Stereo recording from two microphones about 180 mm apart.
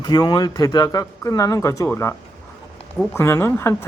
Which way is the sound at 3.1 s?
15° left (ahead or behind).